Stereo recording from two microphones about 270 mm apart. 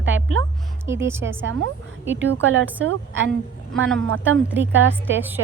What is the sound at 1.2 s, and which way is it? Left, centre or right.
Speech, right.